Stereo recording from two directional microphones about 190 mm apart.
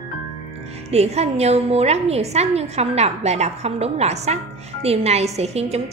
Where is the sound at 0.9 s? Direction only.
35° right (ahead or behind).